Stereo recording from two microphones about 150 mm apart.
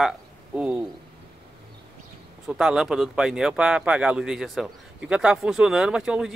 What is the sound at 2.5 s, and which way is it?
Speech, 5° right (ahead or behind).